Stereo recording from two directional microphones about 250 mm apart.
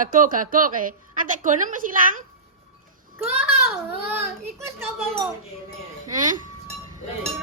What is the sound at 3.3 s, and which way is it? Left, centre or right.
Speech, centre.